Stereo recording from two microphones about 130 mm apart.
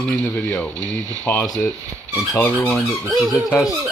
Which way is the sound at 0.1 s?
10° left (ahead or behind).